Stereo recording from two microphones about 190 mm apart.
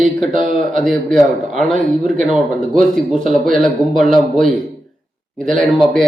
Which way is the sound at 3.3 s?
45° right (ahead or behind).